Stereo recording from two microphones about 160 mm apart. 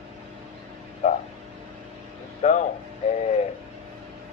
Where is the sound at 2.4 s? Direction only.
45° left (ahead or behind).